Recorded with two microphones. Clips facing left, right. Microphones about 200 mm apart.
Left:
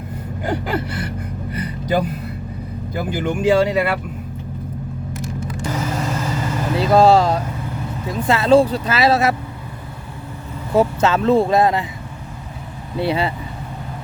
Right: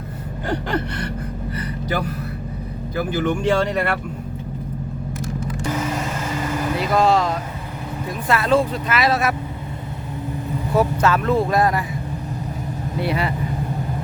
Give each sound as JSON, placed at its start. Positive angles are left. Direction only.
{"t": 0.4, "sound": "speech", "side_deg": 5}
{"t": 1.9, "sound": "speech", "side_deg": 20}
{"t": 6.7, "sound": "speech", "side_deg": 30}
{"t": 10.8, "sound": "speech", "side_deg": 25}
{"t": 13.0, "sound": "speech", "side_deg": 25}